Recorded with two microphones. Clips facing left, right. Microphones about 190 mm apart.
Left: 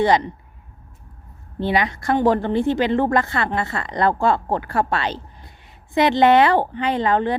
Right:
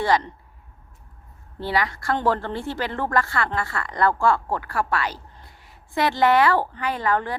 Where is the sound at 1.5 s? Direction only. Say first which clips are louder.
Left 4 dB; 20° left (ahead or behind).